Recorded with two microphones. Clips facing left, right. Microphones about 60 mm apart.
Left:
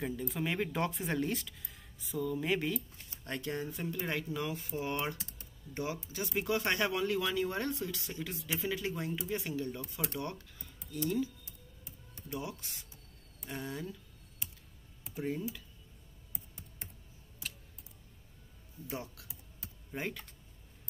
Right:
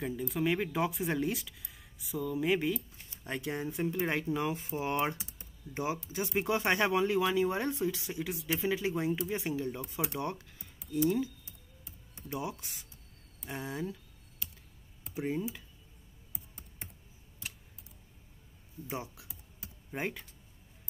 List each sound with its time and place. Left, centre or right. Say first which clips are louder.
0.3 s speech: right 6 dB; centre; by 5.2 s right
5.4 s typing: right 3 dB; right
6.1 s speech: right 2 dB; right
15.1 s speech: right 2 dB; centre
18.9 s speech: right 2 dB; centre
19.6 s typing: right 3 dB; centre